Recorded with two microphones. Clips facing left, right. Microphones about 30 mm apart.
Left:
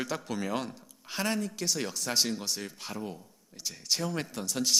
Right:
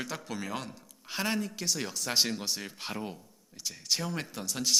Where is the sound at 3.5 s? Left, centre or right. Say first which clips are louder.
Even; centre.